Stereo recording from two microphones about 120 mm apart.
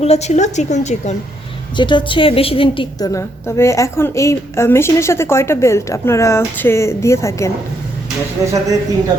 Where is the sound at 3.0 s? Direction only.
25° left (ahead or behind).